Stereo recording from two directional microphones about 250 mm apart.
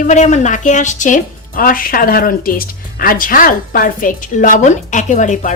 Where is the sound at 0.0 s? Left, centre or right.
Left.